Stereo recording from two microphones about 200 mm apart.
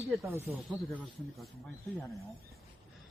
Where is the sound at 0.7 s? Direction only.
Centre (ahead or behind).